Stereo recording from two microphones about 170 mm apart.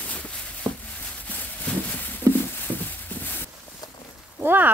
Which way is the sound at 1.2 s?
10° left (ahead or behind).